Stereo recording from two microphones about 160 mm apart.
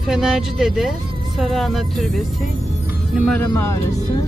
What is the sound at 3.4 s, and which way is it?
Speech, 20° left (ahead or behind).